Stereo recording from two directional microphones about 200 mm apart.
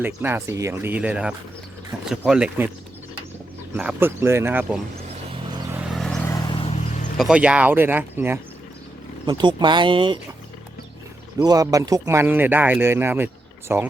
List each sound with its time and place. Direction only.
0.0 s speech: 10° right (ahead or behind)
3.8 s speech: 10° right (ahead or behind)
5.3 s vehicle: 20° right (ahead or behind)
5.7 s vehicle: 5° right (ahead or behind)
6.2 s vehicle: 20° left (ahead or behind)
7.2 s speech: 5° right (ahead or behind)
9.2 s speech: 20° right (ahead or behind)
11.4 s speech: 15° right (ahead or behind)